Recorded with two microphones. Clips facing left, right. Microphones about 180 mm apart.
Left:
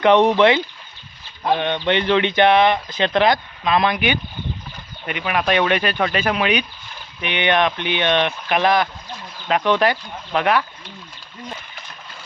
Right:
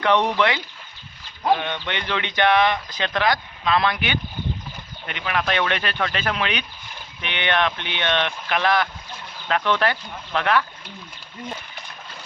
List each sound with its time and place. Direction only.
0.0 s speech: 20° left (ahead or behind)